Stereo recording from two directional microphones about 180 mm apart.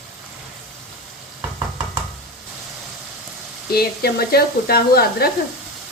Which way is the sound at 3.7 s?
60° left (ahead or behind).